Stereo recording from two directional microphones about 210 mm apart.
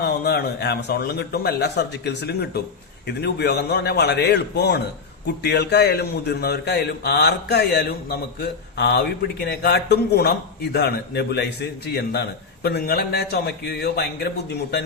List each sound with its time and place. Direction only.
0.0 s a man's voice: 50° left (ahead or behind)